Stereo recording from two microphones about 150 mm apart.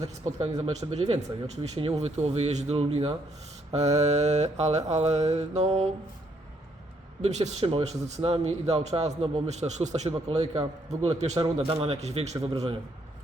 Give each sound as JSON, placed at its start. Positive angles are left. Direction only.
{"t": 0.3, "sound": "a man's voice", "side_deg": -50}
{"t": 7.2, "sound": "a man's voice", "side_deg": -50}